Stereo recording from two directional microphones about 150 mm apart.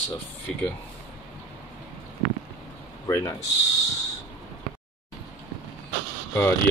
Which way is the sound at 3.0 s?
20° left (ahead or behind).